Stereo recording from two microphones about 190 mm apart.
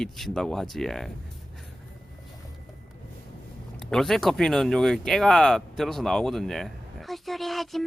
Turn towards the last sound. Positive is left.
turn(degrees=0)  # may be behind; listen again after turning